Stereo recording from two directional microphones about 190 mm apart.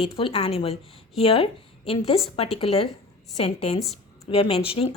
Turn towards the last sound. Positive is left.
turn(degrees=30)  # may be behind; listen again after turning